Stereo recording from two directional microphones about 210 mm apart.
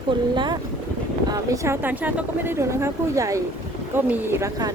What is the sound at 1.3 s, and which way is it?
Speech, 15° right (ahead or behind).